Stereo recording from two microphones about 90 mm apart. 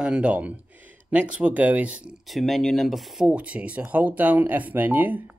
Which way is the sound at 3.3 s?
15° right (ahead or behind).